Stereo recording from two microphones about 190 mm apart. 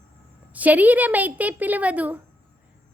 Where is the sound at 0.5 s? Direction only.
10° right (ahead or behind).